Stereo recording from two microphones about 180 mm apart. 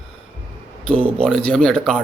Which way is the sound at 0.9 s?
30° right (ahead or behind).